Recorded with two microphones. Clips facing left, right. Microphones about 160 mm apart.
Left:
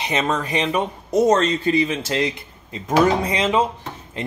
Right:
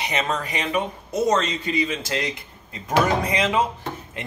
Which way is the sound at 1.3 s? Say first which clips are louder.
Left 5 dB; 35° left (ahead or behind).